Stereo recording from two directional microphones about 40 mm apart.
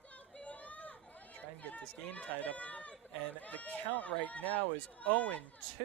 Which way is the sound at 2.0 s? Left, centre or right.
Left.